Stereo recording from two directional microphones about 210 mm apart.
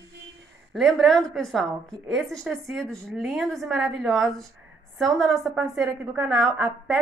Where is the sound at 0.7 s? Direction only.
Centre (ahead or behind).